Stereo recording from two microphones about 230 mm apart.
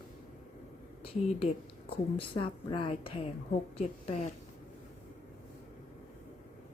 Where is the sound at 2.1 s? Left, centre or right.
Left.